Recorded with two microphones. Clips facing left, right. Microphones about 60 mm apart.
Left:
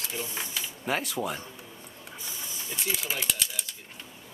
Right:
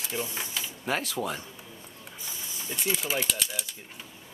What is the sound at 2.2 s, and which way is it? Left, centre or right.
Mechanisms, centre.